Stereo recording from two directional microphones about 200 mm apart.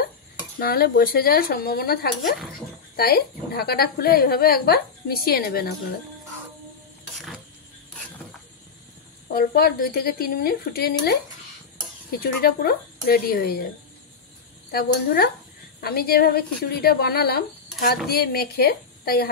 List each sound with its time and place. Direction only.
0.6 s a woman's voice: 50° left (ahead or behind)
9.3 s a woman's voice: 50° left (ahead or behind)
14.7 s a woman's voice: 50° left (ahead or behind)